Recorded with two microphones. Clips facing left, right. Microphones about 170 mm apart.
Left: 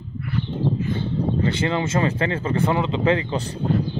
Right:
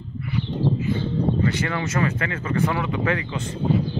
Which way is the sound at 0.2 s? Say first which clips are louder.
Even; 5° right (ahead or behind).